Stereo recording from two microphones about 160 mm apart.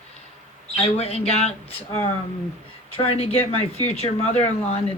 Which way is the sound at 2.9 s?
35° left (ahead or behind).